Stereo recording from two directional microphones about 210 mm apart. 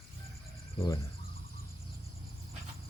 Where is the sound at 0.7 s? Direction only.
20° left (ahead or behind).